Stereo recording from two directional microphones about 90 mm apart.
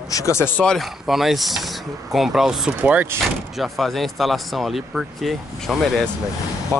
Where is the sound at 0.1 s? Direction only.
35° left (ahead or behind).